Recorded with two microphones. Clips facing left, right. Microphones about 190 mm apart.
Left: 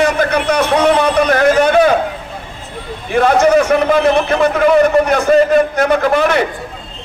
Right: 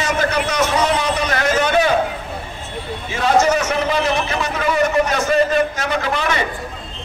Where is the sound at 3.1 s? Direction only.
55° left (ahead or behind).